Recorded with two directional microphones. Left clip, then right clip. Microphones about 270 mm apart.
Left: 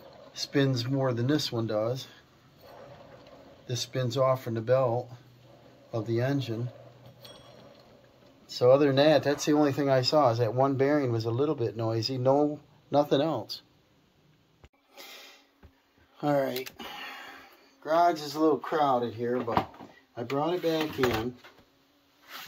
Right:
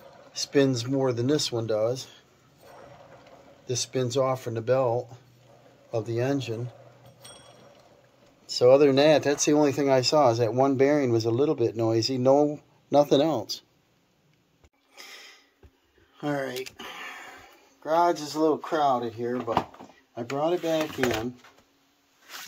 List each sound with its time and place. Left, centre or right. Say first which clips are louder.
0.3 s speech: right 5 dB; right
3.6 s speech: right 4 dB; right
8.5 s speech: right 4 dB; right
15.0 s a sound: right 2 dB; centre
16.2 s speech: left 3 dB; centre; by 20.5 s right